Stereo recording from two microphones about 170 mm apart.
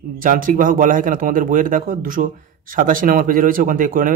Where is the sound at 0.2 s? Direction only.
50° right (ahead or behind).